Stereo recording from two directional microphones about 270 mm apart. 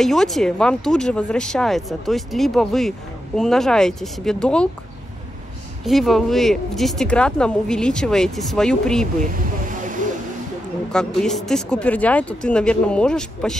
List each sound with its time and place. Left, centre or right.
0.0 s speech: centre
5.9 s speech: centre
9.7 s a sound: right
11.1 s speech: centre